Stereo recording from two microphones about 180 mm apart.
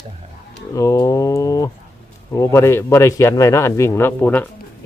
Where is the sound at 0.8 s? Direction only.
15° left (ahead or behind).